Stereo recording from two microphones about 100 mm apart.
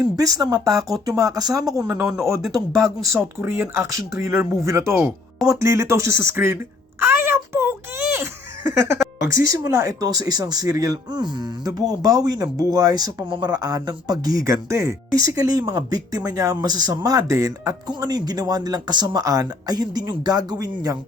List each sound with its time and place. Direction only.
0.0 s speech: 40° right (ahead or behind)